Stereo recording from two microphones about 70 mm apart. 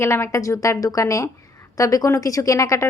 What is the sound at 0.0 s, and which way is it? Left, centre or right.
A woman's voice, left.